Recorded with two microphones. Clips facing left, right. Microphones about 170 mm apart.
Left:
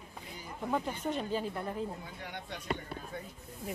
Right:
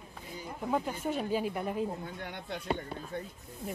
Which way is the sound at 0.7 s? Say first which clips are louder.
Right 2 dB; 5° right (ahead or behind).